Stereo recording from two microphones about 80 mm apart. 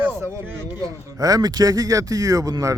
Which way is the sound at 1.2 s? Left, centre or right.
Right.